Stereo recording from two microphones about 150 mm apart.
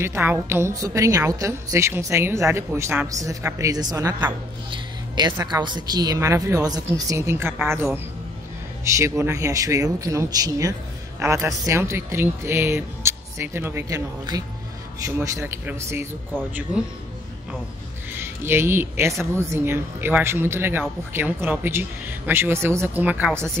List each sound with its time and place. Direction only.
0.0 s a woman's voice: 15° right (ahead or behind)
18.1 s speech: 15° right (ahead or behind)